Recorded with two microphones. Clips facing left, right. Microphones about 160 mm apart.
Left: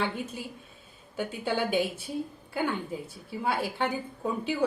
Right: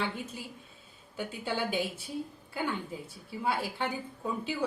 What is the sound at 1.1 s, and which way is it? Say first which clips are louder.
Speech: left 4 dB; 55° left (ahead or behind).